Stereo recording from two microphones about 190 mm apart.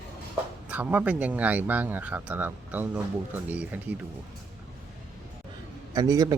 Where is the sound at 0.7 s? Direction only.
10° right (ahead or behind).